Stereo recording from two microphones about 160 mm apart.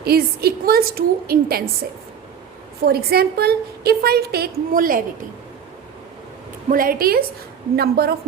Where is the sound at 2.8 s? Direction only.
75° right (ahead or behind).